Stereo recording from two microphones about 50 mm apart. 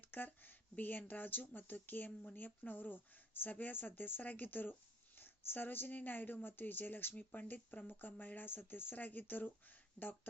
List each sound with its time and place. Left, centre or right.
0.0 s speech: left